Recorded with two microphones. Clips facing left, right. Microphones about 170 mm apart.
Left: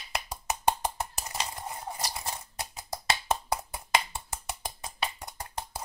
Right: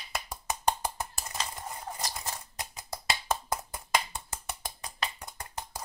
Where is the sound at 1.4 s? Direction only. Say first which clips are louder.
Left 1 dB; 10° left (ahead or behind).